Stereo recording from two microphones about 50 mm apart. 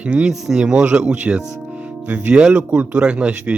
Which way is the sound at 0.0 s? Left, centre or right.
Right.